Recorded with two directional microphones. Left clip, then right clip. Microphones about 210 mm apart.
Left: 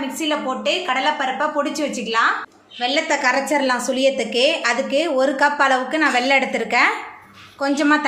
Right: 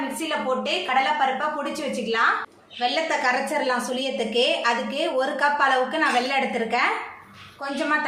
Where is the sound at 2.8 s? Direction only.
30° left (ahead or behind).